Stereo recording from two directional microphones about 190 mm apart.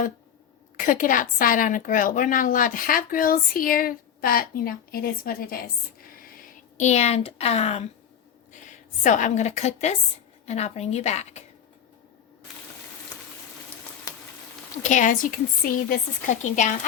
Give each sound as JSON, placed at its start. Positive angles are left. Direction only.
{"t": 0.8, "sound": "a woman's voice", "side_deg": 45}
{"t": 9.0, "sound": "a woman's voice", "side_deg": 40}
{"t": 14.8, "sound": "a woman's voice", "side_deg": 40}